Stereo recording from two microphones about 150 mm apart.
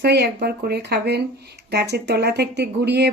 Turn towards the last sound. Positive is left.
turn(degrees=-90)